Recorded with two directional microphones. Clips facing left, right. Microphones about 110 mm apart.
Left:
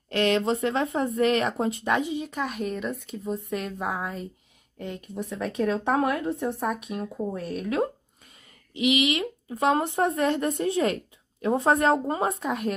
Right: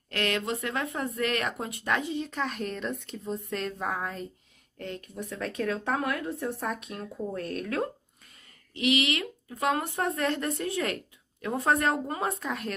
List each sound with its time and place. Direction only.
0.1 s speech: 25° left (ahead or behind); by 7.7 s 5° left (ahead or behind)
8.7 s speech: 15° left (ahead or behind)